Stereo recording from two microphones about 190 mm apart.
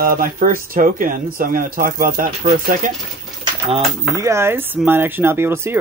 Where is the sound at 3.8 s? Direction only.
15° right (ahead or behind).